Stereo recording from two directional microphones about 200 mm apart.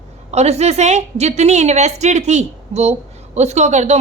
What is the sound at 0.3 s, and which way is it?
A woman's voice, 35° right (ahead or behind).